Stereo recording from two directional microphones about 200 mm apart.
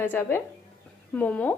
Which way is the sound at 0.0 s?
10° left (ahead or behind).